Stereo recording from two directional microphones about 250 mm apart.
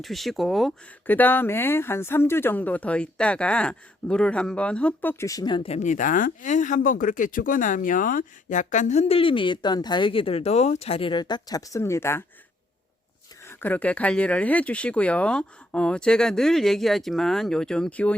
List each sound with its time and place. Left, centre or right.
0.0 s speech: centre
13.4 s speech: centre